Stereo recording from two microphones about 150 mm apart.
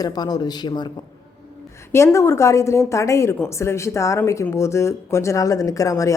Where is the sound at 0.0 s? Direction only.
25° left (ahead or behind).